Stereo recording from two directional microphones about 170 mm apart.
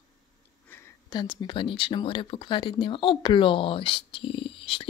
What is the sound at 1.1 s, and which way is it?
Speech, 25° left (ahead or behind).